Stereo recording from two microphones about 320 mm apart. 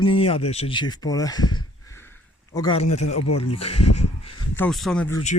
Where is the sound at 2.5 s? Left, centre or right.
Centre.